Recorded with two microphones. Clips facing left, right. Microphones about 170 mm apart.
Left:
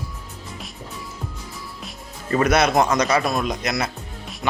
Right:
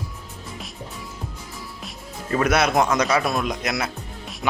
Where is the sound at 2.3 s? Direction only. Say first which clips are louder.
Left 2 dB; 5° right (ahead or behind).